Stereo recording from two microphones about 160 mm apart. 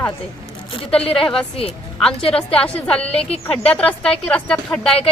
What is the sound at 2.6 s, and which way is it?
Speech, 10° left (ahead or behind).